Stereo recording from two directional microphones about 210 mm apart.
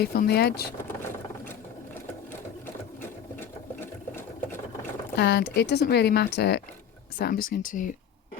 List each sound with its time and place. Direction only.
0.0 s speech: 45° left (ahead or behind)
5.1 s speech: 50° left (ahead or behind)
7.2 s speech: 40° left (ahead or behind)